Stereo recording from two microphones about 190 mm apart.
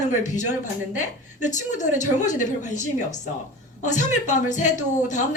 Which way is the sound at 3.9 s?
40° left (ahead or behind).